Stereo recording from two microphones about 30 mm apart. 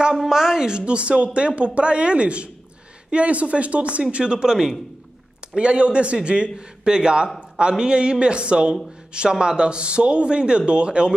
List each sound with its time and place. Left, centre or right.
0.3 s a sound: centre
0.7 s speech: right
5.6 s speech: right
6.5 s a man's voice: right
7.3 s a sound: right
7.8 s speech: right